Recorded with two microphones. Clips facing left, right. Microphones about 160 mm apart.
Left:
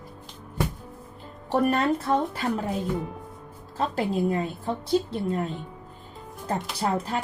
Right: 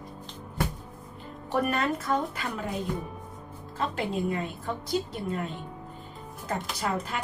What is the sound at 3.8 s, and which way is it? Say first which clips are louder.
A woman's voice: left 4 dB; 35° left (ahead or behind).